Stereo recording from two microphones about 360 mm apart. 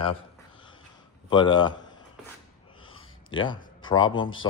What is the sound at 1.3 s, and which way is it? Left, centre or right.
Speech, centre.